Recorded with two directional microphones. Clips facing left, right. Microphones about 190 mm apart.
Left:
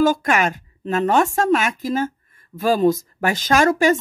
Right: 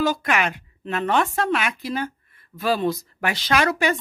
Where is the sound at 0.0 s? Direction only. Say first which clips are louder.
Left 5 dB; 45° left (ahead or behind).